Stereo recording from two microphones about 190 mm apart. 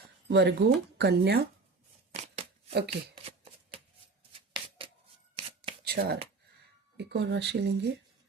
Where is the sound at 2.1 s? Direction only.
35° right (ahead or behind).